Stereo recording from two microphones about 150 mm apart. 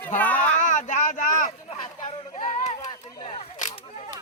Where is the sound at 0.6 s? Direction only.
55° left (ahead or behind).